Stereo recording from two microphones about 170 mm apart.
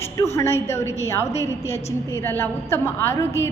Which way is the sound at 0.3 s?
15° left (ahead or behind).